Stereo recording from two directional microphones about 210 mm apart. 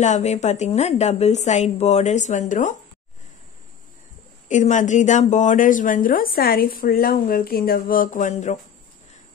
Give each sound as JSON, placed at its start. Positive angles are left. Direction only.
{"t": 0.0, "sound": "speech", "side_deg": 35}
{"t": 4.5, "sound": "speech", "side_deg": 35}